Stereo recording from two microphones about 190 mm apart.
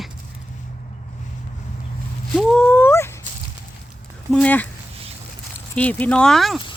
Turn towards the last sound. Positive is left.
turn(degrees=0)  # may be behind; listen again after turning